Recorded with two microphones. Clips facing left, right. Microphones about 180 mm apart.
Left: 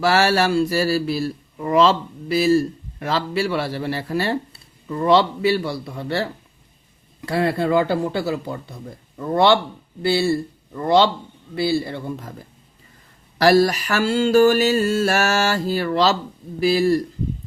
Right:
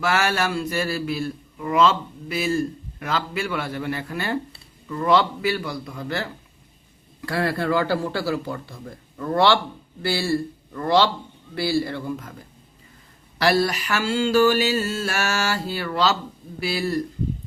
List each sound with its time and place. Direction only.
0.0 s a man's voice: 35° left (ahead or behind)
13.4 s a man's voice: 40° left (ahead or behind)